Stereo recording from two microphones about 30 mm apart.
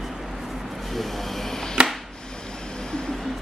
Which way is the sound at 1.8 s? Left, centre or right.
Right.